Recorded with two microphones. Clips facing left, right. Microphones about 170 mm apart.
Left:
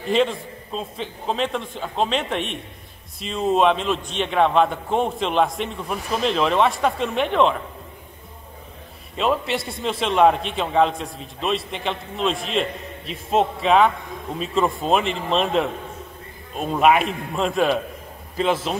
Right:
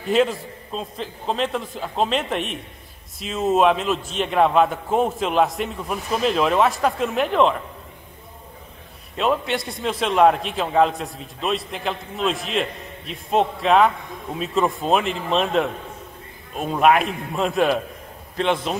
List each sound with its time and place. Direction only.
0.1 s a man's voice: centre (ahead or behind)
9.1 s a man's voice: centre (ahead or behind)